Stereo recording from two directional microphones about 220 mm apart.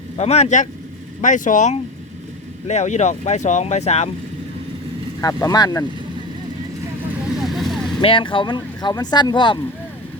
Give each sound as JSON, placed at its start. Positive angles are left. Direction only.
{"t": 0.2, "sound": "speech", "side_deg": 30}
{"t": 5.2, "sound": "speech", "side_deg": 15}
{"t": 7.4, "sound": "vehicle", "side_deg": 0}
{"t": 8.0, "sound": "speech", "side_deg": 25}